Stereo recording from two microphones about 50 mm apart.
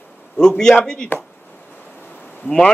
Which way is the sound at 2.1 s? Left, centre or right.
Left.